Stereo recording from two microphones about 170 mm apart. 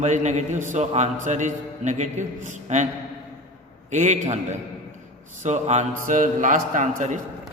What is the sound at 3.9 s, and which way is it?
A man's voice, 45° right (ahead or behind).